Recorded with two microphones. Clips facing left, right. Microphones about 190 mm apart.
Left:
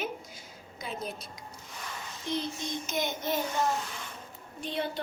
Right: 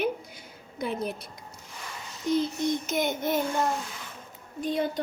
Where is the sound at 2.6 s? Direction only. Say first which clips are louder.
Right 6 dB; 55° right (ahead or behind).